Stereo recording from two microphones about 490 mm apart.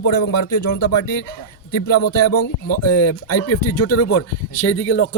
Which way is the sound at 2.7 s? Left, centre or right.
Left.